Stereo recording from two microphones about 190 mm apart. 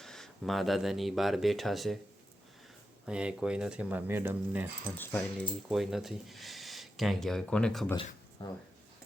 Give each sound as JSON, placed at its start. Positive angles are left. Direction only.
{"t": 0.0, "sound": "speech", "side_deg": 0}
{"t": 3.1, "sound": "speech", "side_deg": -5}
{"t": 4.9, "sound": "speech", "side_deg": 10}
{"t": 5.6, "sound": "speech", "side_deg": 0}
{"t": 8.4, "sound": "speech", "side_deg": 25}